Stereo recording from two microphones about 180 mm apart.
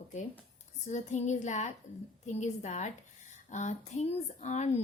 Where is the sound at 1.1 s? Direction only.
40° left (ahead or behind).